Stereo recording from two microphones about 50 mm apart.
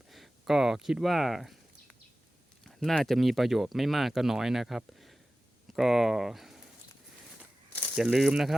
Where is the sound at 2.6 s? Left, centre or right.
Centre.